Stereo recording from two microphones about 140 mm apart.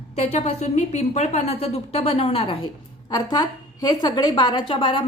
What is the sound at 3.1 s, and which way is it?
A woman's voice, 30° left (ahead or behind).